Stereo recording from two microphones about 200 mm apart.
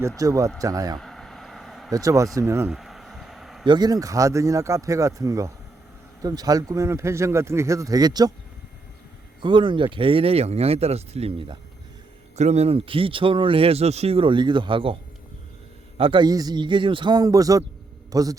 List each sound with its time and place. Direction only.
0.2 s speech: 15° right (ahead or behind)
0.9 s vehicle: centre (ahead or behind)
1.9 s speech: 15° right (ahead or behind)
2.6 s a sound: centre (ahead or behind)
3.7 s speech: 20° right (ahead or behind)
9.4 s speech: 25° right (ahead or behind)
16.0 s speech: 25° right (ahead or behind)